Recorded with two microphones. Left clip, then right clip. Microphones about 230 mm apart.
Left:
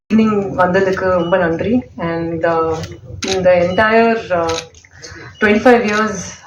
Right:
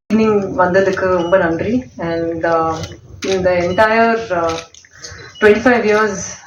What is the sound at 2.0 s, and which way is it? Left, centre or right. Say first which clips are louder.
A woman's voice: right 1 dB; left.